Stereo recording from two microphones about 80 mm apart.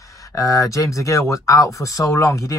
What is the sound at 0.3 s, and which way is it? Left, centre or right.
Speech, left.